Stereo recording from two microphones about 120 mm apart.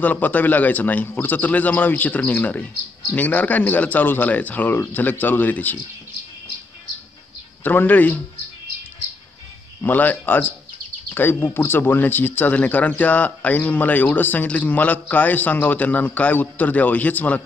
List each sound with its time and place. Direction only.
0.0 s speech: 15° left (ahead or behind)
7.6 s speech: 15° left (ahead or behind)
9.8 s speech: 15° left (ahead or behind)